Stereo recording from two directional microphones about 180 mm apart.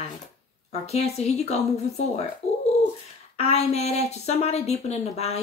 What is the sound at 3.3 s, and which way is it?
A woman's voice, 35° left (ahead or behind).